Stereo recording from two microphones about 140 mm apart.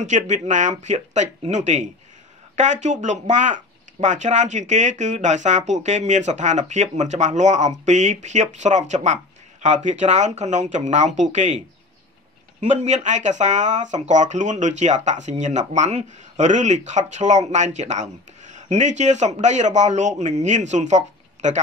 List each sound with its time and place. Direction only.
0.0 s speech: 60° right (ahead or behind)
12.5 s speech: 55° right (ahead or behind)